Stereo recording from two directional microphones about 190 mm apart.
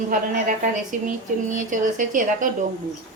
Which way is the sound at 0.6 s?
45° right (ahead or behind).